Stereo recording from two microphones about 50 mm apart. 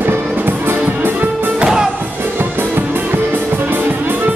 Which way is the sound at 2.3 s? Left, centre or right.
Right.